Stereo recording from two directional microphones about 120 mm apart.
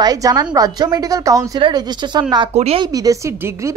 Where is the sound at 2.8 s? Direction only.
30° right (ahead or behind).